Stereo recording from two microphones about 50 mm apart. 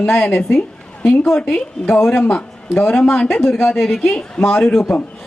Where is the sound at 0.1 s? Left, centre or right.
Left.